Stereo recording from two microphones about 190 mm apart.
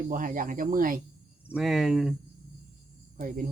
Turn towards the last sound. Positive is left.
turn(degrees=-45)  # may be behind; listen again after turning